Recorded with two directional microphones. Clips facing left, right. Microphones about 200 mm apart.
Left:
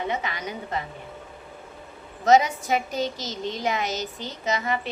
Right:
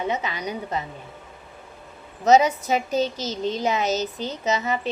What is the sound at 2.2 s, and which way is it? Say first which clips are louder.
Speech: right 2 dB; 20° right (ahead or behind).